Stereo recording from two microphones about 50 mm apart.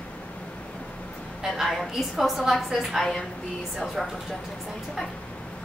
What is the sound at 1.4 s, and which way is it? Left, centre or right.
A woman's voice, centre.